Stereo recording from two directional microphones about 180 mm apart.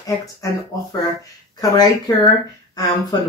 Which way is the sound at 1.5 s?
20° left (ahead or behind).